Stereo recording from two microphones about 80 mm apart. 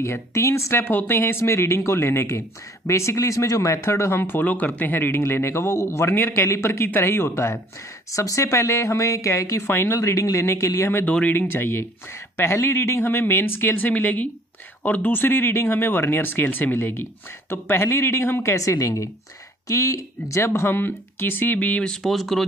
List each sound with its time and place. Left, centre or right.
0.0 s speech: left
11.1 s speech: centre